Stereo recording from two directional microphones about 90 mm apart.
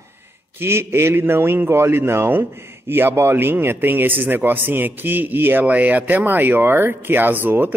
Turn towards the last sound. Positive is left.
turn(degrees=-20)  # may be behind; listen again after turning